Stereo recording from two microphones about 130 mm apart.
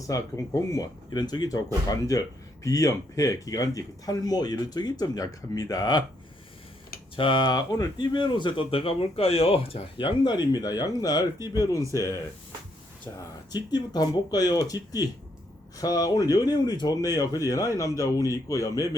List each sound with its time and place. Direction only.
0.1 s speech: 25° left (ahead or behind)
7.2 s speech: 35° left (ahead or behind)
13.5 s speech: 30° left (ahead or behind)